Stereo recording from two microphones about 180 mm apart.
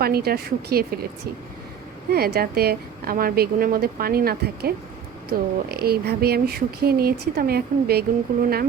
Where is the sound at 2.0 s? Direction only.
60° right (ahead or behind).